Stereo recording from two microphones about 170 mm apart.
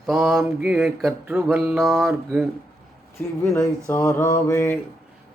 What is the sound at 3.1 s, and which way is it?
Mantra, 15° left (ahead or behind).